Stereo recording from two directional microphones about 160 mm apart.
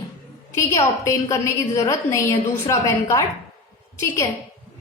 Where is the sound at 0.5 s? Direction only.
20° left (ahead or behind).